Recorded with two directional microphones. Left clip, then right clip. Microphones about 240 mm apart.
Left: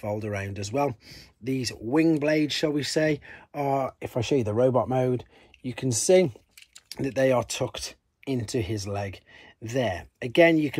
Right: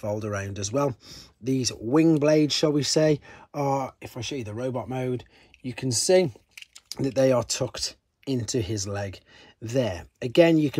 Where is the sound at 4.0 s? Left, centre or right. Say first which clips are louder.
Left 8 dB; centre.